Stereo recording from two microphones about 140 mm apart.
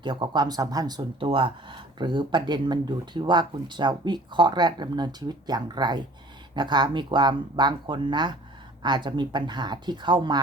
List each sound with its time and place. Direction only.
0.0 s speech: 35° right (ahead or behind)